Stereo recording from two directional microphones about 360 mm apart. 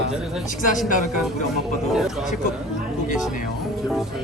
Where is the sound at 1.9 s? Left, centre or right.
Centre.